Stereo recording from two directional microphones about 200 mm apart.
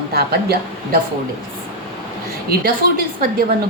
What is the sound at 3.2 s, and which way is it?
Speech, 50° right (ahead or behind).